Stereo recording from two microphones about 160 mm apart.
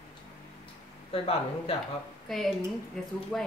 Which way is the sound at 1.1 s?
35° left (ahead or behind).